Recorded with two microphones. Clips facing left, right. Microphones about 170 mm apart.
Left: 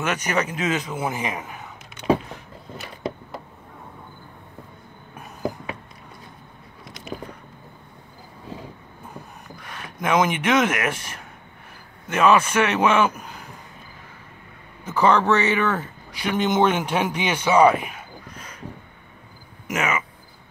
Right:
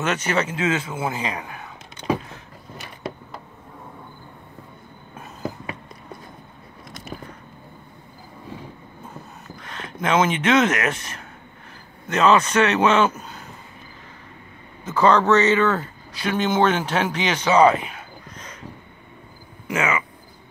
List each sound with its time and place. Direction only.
0.0 s a man's voice: 15° left (ahead or behind)
9.7 s a man's voice: 10° left (ahead or behind)
14.9 s speech: 15° left (ahead or behind)
19.7 s a man's voice: 20° left (ahead or behind)